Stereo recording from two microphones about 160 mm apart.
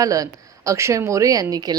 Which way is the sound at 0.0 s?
20° right (ahead or behind).